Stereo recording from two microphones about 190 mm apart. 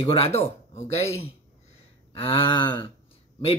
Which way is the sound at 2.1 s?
30° left (ahead or behind).